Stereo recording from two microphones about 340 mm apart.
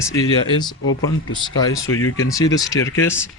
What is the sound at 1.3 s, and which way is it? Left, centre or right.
Speech, centre.